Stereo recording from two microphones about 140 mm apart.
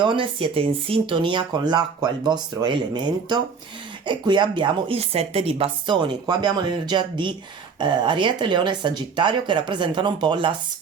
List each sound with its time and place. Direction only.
0.0 s speech: 40° right (ahead or behind)